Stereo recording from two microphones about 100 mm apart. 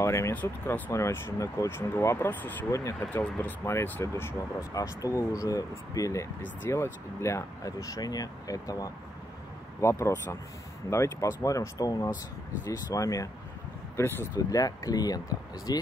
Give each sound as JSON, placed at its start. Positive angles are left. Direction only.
{"t": 0.0, "sound": "speech", "side_deg": 30}
{"t": 0.3, "sound": "speech", "side_deg": 15}
{"t": 2.7, "sound": "speech", "side_deg": 30}
{"t": 13.9, "sound": "speech", "side_deg": 25}
{"t": 14.5, "sound": "speech", "side_deg": 35}